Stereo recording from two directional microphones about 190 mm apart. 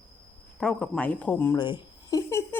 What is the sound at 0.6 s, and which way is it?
Speech, 5° left (ahead or behind).